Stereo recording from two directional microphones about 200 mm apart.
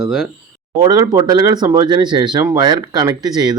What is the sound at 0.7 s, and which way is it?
Speech, 20° right (ahead or behind).